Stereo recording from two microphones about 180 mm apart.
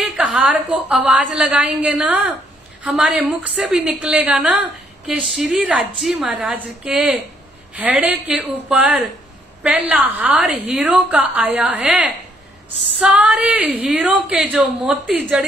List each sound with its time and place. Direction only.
0.1 s a woman's voice: centre (ahead or behind)